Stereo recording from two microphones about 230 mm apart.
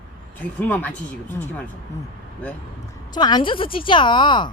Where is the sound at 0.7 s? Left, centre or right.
Centre.